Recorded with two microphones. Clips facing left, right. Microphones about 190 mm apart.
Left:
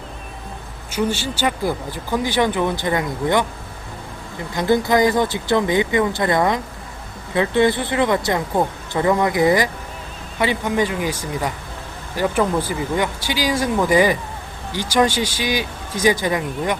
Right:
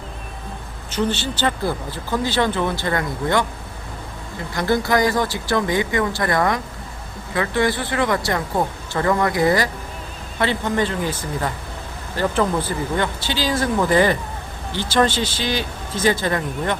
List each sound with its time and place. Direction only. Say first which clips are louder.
0.9 s speech: left 1 dB; 10° left (ahead or behind)
4.5 s speech: left 2 dB; 20° left (ahead or behind)